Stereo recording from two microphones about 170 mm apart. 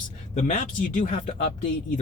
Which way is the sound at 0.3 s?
50° left (ahead or behind).